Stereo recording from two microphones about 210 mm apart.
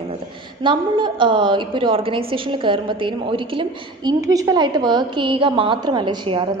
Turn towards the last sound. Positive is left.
turn(degrees=-20)  # may be behind; listen again after turning